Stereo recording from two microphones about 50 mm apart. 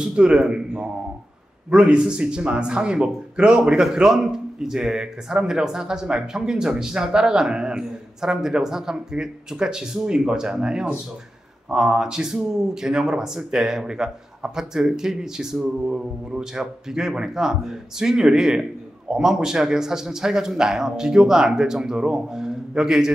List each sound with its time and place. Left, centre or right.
0.0 s a man's voice: centre
3.8 s speech: centre